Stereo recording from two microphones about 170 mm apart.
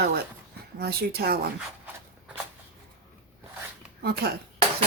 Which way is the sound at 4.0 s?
65° right (ahead or behind).